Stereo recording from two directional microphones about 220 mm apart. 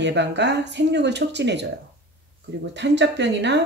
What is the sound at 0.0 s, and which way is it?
Speech, 50° right (ahead or behind).